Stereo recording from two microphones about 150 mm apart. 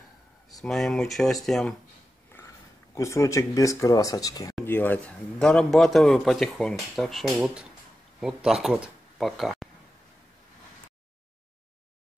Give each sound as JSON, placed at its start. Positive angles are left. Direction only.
{"t": 0.5, "sound": "a man's voice", "side_deg": 0}
{"t": 2.3, "sound": "speech", "side_deg": 20}
{"t": 4.6, "sound": "a man's voice", "side_deg": 15}